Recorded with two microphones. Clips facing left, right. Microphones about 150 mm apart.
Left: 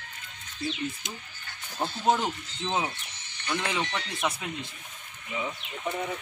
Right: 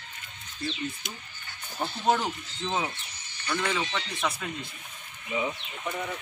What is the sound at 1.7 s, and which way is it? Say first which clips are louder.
Speech: even; 20° left (ahead or behind).